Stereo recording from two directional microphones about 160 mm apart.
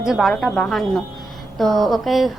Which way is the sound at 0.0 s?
Centre (ahead or behind).